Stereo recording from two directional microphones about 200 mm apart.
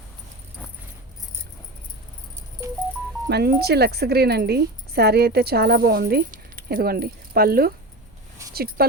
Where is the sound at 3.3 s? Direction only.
55° right (ahead or behind).